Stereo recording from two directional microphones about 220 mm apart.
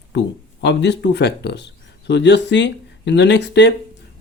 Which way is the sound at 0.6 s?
50° left (ahead or behind).